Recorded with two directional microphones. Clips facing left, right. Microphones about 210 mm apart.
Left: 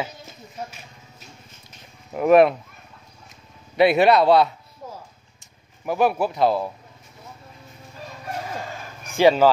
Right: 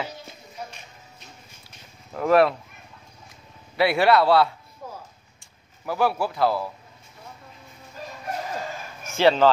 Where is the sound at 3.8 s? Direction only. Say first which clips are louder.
Left 3 dB; 20° left (ahead or behind).